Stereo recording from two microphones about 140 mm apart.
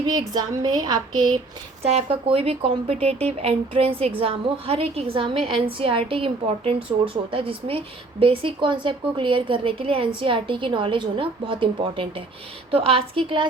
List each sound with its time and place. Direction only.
0.0 s a woman's voice: 30° right (ahead or behind)
1.8 s a woman's voice: 50° right (ahead or behind)